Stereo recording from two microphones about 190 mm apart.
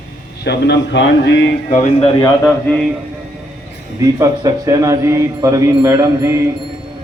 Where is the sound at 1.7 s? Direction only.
40° left (ahead or behind).